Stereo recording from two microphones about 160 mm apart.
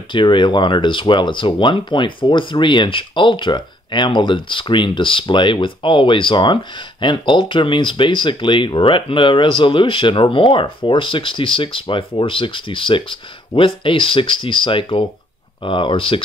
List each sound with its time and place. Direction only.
0.1 s speech: 30° left (ahead or behind)